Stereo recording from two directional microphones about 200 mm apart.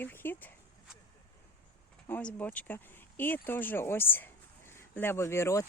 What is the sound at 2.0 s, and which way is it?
Speech, 10° left (ahead or behind).